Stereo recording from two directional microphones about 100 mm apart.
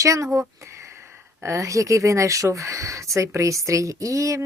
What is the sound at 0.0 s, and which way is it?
Speech, 30° right (ahead or behind).